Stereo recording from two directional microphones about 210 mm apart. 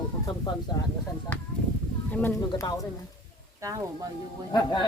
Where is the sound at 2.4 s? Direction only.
20° left (ahead or behind).